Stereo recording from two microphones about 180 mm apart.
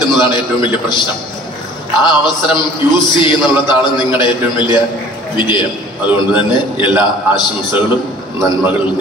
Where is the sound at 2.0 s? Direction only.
25° left (ahead or behind).